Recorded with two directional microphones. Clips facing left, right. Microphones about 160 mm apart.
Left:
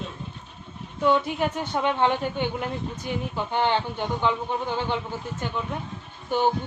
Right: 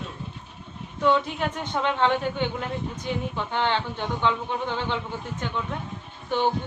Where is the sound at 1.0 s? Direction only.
10° left (ahead or behind).